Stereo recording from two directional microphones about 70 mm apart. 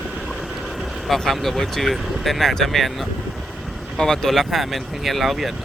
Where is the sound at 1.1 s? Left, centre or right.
Centre.